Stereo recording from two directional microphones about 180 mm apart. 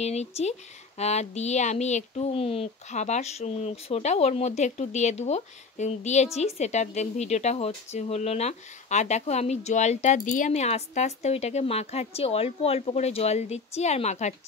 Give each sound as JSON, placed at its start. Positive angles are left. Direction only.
{"t": 0.0, "sound": "a woman's voice", "side_deg": 35}